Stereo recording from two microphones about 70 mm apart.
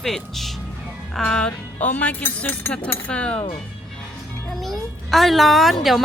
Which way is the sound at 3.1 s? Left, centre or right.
Centre.